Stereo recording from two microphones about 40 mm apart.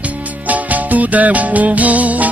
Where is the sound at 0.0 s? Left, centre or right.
Right.